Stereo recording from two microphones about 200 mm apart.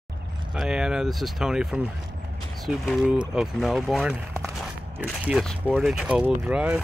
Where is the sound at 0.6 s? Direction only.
5° right (ahead or behind).